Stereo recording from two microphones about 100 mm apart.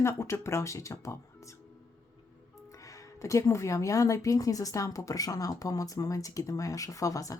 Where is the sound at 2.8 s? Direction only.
30° left (ahead or behind).